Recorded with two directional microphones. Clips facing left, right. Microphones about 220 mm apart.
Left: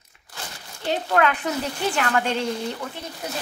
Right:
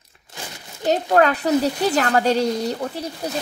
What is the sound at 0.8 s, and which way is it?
Speech, 40° right (ahead or behind).